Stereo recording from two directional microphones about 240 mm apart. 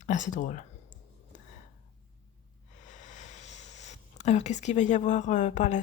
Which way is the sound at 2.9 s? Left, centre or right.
Left.